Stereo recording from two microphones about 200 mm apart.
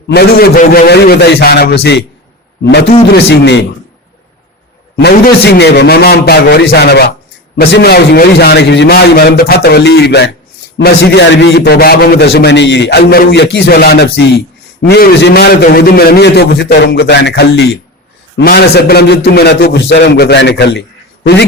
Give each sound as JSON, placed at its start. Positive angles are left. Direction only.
{"t": 0.1, "sound": "a man's voice", "side_deg": 50}
{"t": 4.9, "sound": "a man's voice", "side_deg": 55}